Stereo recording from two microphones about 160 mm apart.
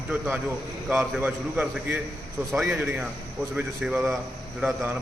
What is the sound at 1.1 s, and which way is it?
A man's voice, 10° right (ahead or behind).